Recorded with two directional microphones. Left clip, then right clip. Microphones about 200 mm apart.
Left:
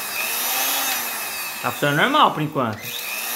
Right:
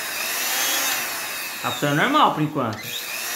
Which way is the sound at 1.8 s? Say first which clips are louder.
Left 2 dB; 30° left (ahead or behind).